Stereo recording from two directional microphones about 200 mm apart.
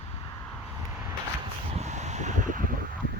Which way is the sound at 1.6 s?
35° right (ahead or behind).